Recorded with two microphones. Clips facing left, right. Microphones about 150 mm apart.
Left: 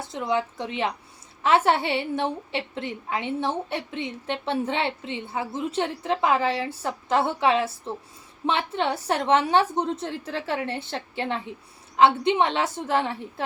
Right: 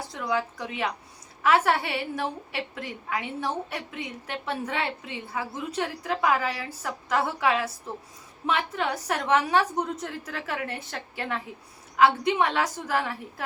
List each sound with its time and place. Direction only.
0.0 s a woman's voice: 25° left (ahead or behind)